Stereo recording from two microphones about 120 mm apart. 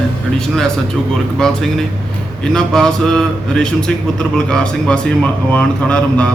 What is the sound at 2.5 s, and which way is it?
A man's voice, 5° left (ahead or behind).